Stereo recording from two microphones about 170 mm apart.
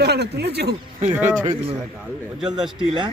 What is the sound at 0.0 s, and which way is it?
Speech, 75° right (ahead or behind).